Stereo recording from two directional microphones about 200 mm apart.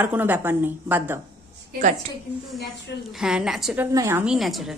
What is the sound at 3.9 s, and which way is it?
Speech, 15° right (ahead or behind).